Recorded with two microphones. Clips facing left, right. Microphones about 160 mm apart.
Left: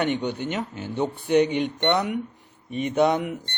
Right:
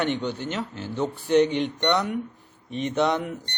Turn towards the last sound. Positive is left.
turn(degrees=10)  # may be behind; listen again after turning